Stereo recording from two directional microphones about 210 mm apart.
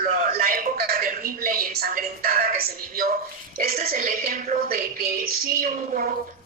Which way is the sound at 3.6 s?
45° right (ahead or behind).